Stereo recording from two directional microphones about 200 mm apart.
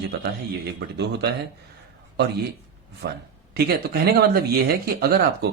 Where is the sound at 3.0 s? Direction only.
55° right (ahead or behind).